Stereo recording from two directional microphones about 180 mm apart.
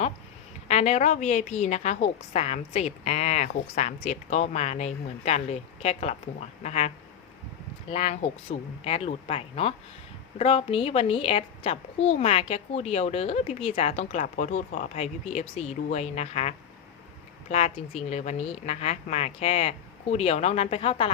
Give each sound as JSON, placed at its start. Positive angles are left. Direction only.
{"t": 0.7, "sound": "a woman's voice", "side_deg": 35}
{"t": 7.9, "sound": "a woman's voice", "side_deg": 35}